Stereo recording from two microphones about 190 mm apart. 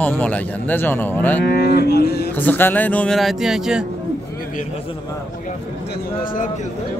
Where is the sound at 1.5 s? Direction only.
60° left (ahead or behind).